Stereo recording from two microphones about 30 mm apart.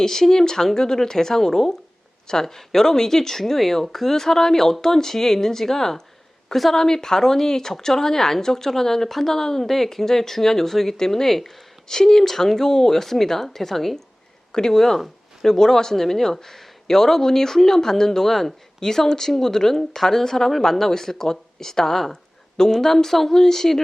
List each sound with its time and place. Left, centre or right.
0.0 s speech: centre
14.9 s a sound: centre
15.4 s speech: centre
18.8 s speech: centre